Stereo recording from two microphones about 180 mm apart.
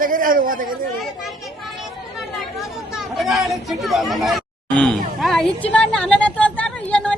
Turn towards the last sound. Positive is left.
turn(degrees=5)  # may be behind; listen again after turning